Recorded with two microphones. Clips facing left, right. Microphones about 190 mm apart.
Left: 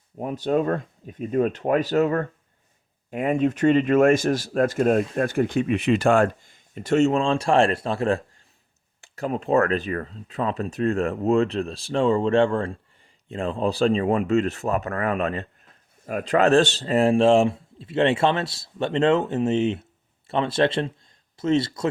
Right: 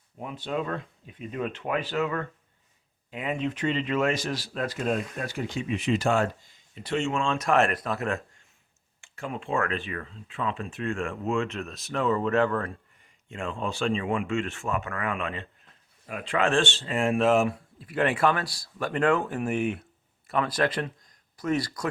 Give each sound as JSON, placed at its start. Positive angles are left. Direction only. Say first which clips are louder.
{"t": 0.2, "sound": "speech", "louder": "left 8 dB", "side_deg": 45}